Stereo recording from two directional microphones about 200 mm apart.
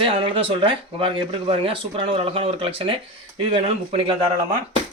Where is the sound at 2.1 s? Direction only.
30° right (ahead or behind).